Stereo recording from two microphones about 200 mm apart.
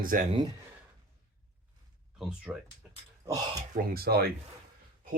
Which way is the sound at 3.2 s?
20° right (ahead or behind).